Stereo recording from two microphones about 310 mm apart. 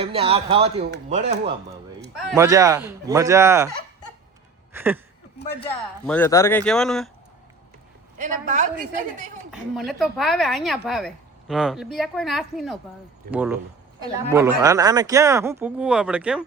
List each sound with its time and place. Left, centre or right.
0.0 s speech: centre
2.3 s speech: centre
4.7 s a sound: centre
5.6 s a woman's voice: centre
8.2 s speech: right
9.5 s a woman's voice: centre